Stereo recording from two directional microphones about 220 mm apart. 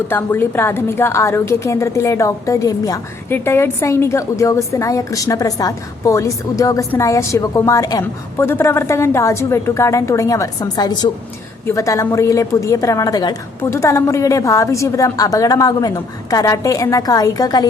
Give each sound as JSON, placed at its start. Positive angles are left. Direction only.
{"t": 0.1, "sound": "a woman's voice", "side_deg": 10}